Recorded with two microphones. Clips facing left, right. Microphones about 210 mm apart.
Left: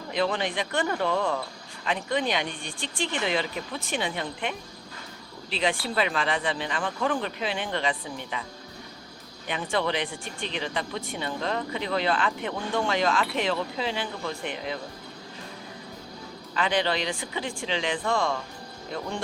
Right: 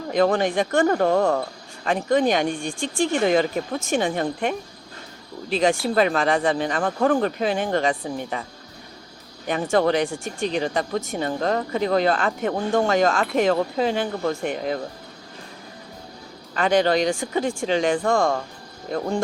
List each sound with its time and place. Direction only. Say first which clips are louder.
0.1 s speech: right 8 dB; 45° right (ahead or behind)
9.5 s speech: right 8 dB; 45° right (ahead or behind)
16.6 s speech: right 7 dB; 45° right (ahead or behind)